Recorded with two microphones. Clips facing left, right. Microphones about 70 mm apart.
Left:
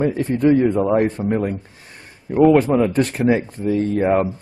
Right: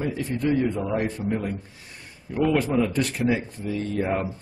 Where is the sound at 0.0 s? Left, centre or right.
Left.